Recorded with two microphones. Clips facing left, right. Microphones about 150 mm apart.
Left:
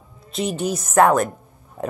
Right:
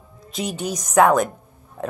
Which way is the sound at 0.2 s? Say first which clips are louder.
Left 3 dB; centre (ahead or behind).